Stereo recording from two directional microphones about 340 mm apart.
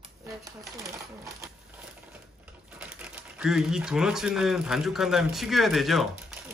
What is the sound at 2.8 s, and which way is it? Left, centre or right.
Speech, centre.